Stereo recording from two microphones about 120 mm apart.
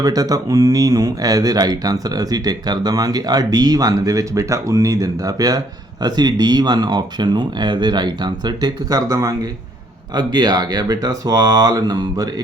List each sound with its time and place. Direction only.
0.0 s speech: 30° right (ahead or behind)